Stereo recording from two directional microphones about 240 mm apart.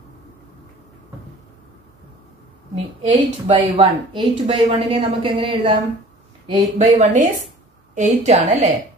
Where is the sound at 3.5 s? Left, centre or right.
Right.